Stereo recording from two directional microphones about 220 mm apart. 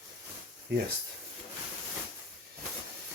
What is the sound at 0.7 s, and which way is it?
Speech, 50° right (ahead or behind).